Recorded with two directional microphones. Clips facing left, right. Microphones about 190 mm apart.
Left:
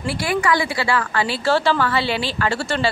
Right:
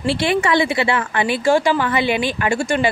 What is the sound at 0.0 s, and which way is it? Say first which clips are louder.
Speech: right 3 dB; 25° right (ahead or behind).